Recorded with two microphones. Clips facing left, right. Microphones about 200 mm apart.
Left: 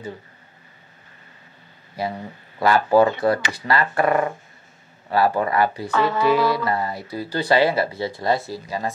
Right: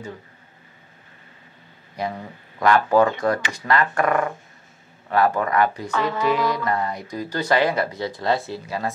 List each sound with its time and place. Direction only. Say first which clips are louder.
2.0 s speech: left 1 dB; 5° left (ahead or behind)
5.9 s speech: left 3 dB; 35° left (ahead or behind)
6.5 s speech: left 1 dB; 5° left (ahead or behind)
8.1 s speech: right 1 dB; 20° left (ahead or behind)
8.6 s speech: even; centre (ahead or behind)